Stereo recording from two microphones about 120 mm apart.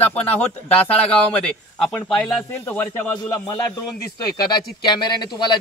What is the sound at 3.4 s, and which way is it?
Speech, 30° left (ahead or behind).